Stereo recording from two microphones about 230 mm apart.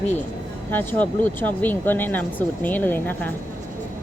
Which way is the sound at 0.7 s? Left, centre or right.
Centre.